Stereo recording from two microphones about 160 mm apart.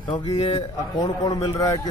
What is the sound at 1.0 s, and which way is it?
Speech, 25° left (ahead or behind).